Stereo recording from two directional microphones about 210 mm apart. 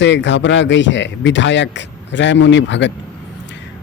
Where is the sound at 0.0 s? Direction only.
60° left (ahead or behind).